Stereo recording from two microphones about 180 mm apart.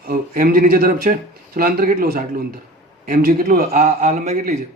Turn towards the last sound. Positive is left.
turn(degrees=-40)  # may be behind; listen again after turning